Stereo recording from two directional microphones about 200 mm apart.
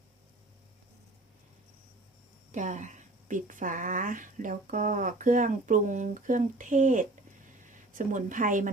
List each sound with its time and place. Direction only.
2.5 s speech: 40° right (ahead or behind)